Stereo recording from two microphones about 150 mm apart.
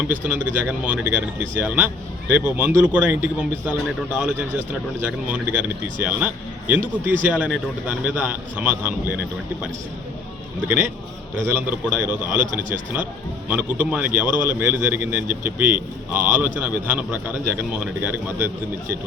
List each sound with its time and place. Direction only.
0.3 s a man's voice: 10° right (ahead or behind)
11.4 s a man's voice: 15° right (ahead or behind)
12.4 s speech: 60° right (ahead or behind)
13.5 s a man's voice: 10° right (ahead or behind)